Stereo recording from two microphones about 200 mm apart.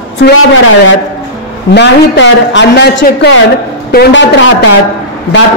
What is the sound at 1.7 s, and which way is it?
A woman's voice, 60° left (ahead or behind).